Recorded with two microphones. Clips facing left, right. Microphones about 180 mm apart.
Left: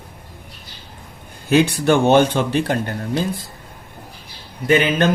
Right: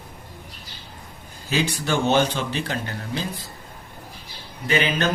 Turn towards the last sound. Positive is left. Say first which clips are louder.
# left 6 dB
turn(degrees=50)  # may be behind; listen again after turning